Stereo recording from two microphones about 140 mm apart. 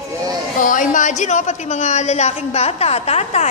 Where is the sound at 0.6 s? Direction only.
70° left (ahead or behind).